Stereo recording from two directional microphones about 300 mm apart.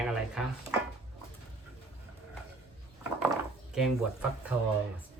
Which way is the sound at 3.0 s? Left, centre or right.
Centre.